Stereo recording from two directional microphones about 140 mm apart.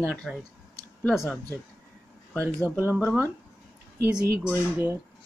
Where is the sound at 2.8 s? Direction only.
15° right (ahead or behind).